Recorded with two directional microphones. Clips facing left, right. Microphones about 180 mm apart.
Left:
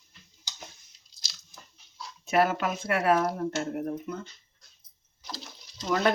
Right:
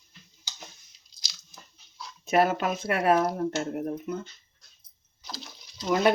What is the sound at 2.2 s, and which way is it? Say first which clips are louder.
Speech: right 1 dB; 20° right (ahead or behind).